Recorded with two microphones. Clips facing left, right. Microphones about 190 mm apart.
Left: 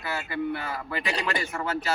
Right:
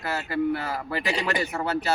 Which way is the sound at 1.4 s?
35° right (ahead or behind).